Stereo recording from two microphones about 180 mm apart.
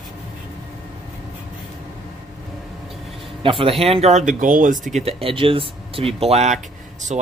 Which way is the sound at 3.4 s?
30° right (ahead or behind).